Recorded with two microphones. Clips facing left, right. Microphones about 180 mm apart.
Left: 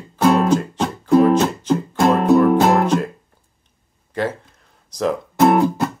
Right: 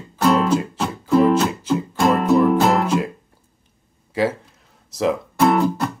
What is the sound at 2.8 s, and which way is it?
Guitar, centre (ahead or behind).